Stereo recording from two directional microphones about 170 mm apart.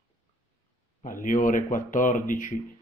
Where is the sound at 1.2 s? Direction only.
50° left (ahead or behind).